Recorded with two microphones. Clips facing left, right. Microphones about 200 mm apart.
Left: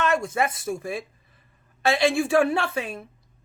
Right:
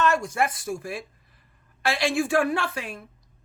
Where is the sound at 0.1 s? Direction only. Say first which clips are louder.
Left 1 dB; 25° left (ahead or behind).